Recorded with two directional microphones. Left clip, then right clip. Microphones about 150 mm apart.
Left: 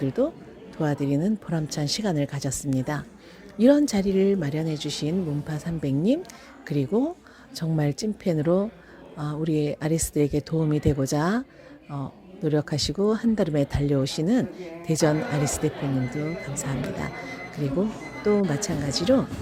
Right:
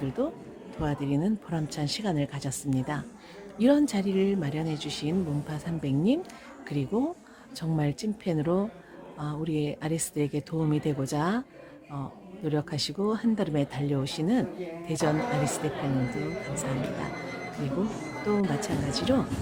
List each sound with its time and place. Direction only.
0.2 s speech: 25° left (ahead or behind)